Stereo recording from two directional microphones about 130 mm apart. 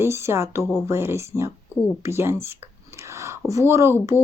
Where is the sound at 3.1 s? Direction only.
20° right (ahead or behind).